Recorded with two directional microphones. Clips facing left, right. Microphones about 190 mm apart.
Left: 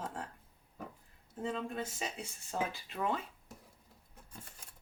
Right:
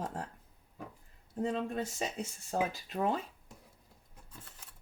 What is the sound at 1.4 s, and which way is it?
Speech, 40° right (ahead or behind).